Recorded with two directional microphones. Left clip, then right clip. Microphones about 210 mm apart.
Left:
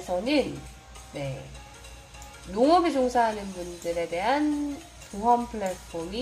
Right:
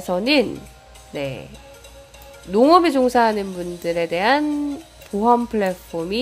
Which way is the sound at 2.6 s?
35° right (ahead or behind).